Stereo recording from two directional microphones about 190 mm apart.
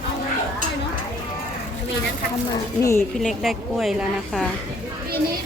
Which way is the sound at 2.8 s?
15° left (ahead or behind).